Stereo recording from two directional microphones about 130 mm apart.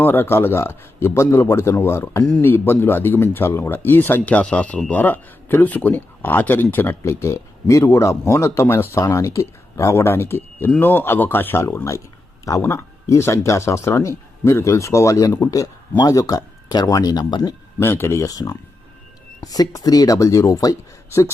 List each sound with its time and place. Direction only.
0.0 s speech: 15° left (ahead or behind); by 17.5 s 30° left (ahead or behind)
17.7 s speech: 20° left (ahead or behind)